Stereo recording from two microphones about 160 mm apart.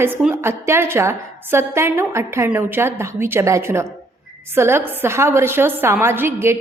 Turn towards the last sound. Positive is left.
turn(degrees=-15)  # may be behind; listen again after turning